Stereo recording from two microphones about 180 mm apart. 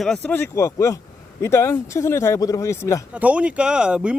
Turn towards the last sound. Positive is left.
turn(degrees=-5)  # may be behind; listen again after turning